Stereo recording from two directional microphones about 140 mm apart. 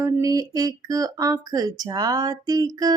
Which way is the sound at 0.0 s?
25° right (ahead or behind).